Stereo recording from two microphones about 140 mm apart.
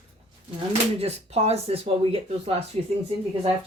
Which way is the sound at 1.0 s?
45° right (ahead or behind).